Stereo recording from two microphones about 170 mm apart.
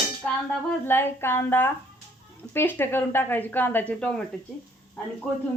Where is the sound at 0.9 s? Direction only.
15° left (ahead or behind).